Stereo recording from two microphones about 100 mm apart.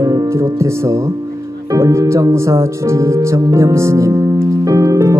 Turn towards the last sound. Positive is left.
turn(degrees=-35)  # may be behind; listen again after turning